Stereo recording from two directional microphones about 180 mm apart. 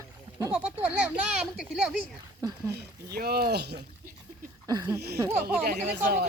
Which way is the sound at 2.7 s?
60° right (ahead or behind).